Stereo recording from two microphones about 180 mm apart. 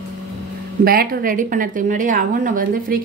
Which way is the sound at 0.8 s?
50° right (ahead or behind).